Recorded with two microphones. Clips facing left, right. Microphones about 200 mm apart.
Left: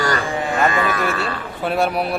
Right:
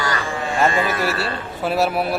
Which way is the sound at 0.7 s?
25° right (ahead or behind).